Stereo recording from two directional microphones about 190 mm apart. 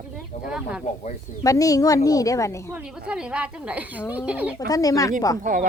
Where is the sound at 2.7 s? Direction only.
5° right (ahead or behind).